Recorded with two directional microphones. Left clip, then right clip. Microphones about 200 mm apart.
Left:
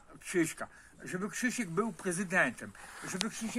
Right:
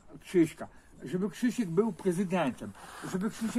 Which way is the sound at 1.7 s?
Centre (ahead or behind).